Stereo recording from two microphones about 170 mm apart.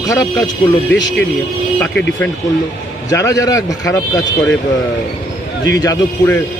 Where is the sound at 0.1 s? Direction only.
20° left (ahead or behind).